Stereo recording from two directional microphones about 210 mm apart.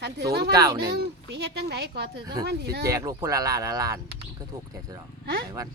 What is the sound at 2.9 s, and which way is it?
Speech, 15° right (ahead or behind).